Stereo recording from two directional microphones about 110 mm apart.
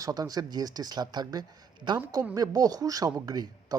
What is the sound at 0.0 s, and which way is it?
Speech, 35° right (ahead or behind).